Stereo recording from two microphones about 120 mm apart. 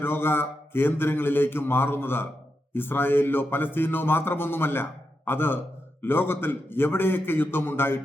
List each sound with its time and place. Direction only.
0.0 s a man's voice: 20° left (ahead or behind)